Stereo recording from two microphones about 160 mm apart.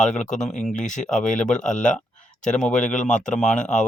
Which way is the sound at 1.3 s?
50° left (ahead or behind).